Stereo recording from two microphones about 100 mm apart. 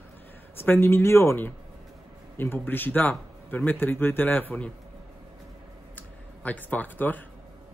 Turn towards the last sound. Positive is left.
turn(degrees=20)  # may be behind; listen again after turning